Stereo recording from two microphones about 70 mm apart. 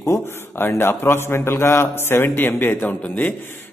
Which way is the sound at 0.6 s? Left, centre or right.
Left.